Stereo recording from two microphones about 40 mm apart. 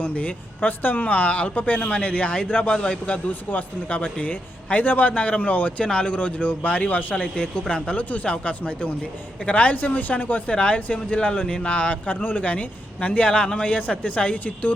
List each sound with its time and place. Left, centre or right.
0.0 s a man's voice: left
5.1 s a man's voice: left
7.3 s a man's voice: left